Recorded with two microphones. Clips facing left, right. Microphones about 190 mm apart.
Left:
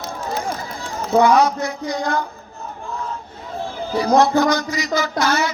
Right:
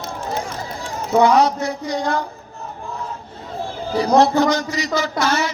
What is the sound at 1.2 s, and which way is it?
Speech, 30° right (ahead or behind).